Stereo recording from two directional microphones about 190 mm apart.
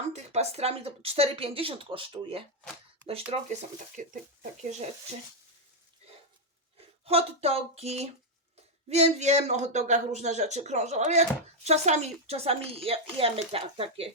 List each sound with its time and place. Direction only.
0.1 s speech: 35° right (ahead or behind)
6.7 s speech: 30° right (ahead or behind)